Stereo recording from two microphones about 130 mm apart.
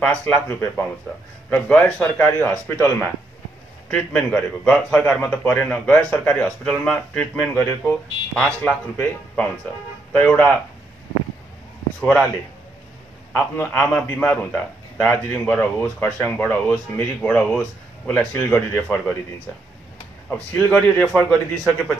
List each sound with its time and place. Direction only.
0.2 s speech: 15° left (ahead or behind)
3.9 s speech: 5° left (ahead or behind)
12.0 s a man's voice: 5° left (ahead or behind)
13.3 s speech: 10° left (ahead or behind)
20.2 s a man's voice: 15° left (ahead or behind)